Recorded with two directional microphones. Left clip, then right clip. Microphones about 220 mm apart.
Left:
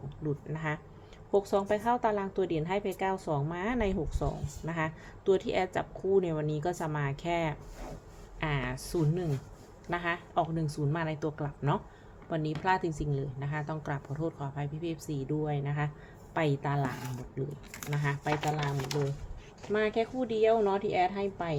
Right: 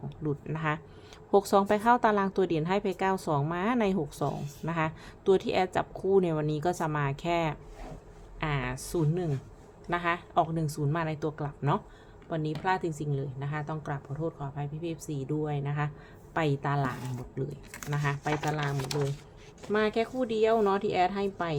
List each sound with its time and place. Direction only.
0.3 s a woman's voice: 15° right (ahead or behind)